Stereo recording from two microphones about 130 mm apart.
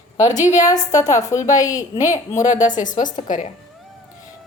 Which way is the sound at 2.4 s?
70° left (ahead or behind).